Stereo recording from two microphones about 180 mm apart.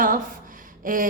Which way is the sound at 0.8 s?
50° right (ahead or behind).